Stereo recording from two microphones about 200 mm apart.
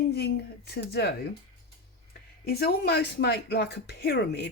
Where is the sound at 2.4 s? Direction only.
50° left (ahead or behind).